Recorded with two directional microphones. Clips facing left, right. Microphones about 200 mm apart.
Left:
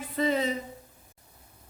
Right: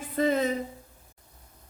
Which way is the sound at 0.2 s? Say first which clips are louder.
Right 2 dB; 50° right (ahead or behind).